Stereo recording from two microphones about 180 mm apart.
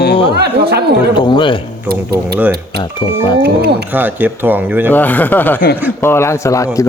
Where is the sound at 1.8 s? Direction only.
60° right (ahead or behind).